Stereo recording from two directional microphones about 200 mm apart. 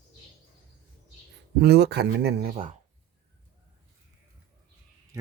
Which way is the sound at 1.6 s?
55° right (ahead or behind).